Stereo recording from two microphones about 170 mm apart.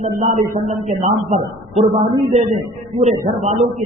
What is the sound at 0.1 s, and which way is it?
A man's voice, 50° right (ahead or behind).